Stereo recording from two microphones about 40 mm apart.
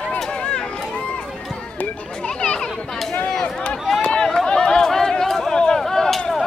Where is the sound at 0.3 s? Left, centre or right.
Left.